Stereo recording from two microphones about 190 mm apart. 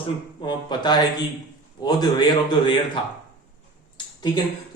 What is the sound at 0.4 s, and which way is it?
A man's voice, 20° left (ahead or behind).